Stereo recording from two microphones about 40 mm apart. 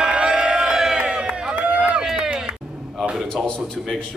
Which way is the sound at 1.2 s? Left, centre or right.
Right.